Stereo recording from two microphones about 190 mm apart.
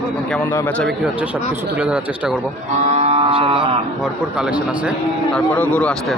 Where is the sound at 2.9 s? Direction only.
35° right (ahead or behind).